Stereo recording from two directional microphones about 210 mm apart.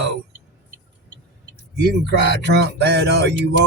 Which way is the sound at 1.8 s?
55° right (ahead or behind).